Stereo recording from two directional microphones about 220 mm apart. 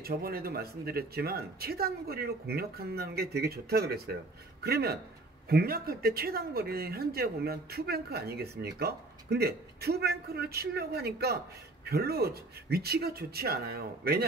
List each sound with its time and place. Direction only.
0.0 s speech: 45° right (ahead or behind)